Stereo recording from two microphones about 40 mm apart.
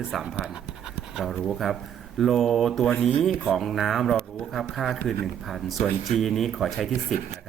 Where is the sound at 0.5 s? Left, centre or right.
Centre.